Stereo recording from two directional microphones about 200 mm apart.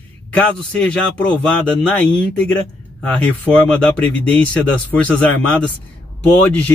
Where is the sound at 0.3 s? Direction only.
5° left (ahead or behind).